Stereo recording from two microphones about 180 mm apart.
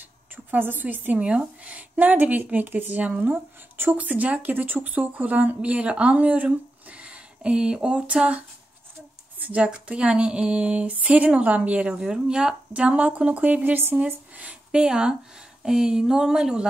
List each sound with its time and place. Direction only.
0.5 s a woman's voice: 10° right (ahead or behind)
9.5 s a woman's voice: 5° right (ahead or behind)